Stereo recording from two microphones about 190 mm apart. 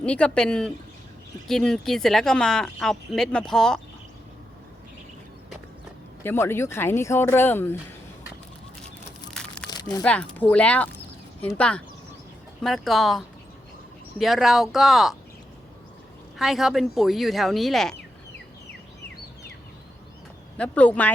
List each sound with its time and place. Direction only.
0.0 s speech: 5° left (ahead or behind)
6.2 s speech: 10° left (ahead or behind)
9.3 s a sound: 5° left (ahead or behind)
9.6 s crumpling: 20° left (ahead or behind)
10.0 s speech: 5° left (ahead or behind)
16.4 s speech: centre (ahead or behind)
20.6 s speech: 5° left (ahead or behind)